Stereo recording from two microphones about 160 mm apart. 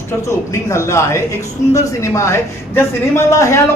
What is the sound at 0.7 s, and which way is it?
Speech, 20° left (ahead or behind).